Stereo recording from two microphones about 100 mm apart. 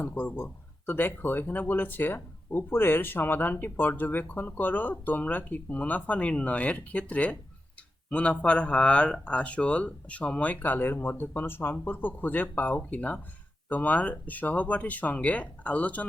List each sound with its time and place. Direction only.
0.0 s speech: 15° left (ahead or behind)